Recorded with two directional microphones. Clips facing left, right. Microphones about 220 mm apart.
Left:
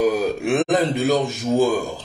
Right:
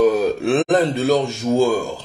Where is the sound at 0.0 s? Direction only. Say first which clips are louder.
Right 3 dB; 15° left (ahead or behind).